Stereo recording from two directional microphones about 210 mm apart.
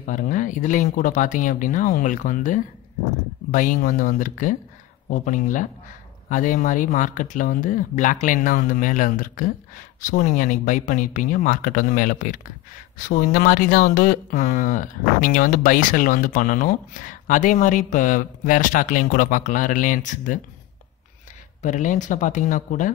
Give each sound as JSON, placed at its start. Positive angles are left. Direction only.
{"t": 0.0, "sound": "speech", "side_deg": 40}
{"t": 21.6, "sound": "speech", "side_deg": 35}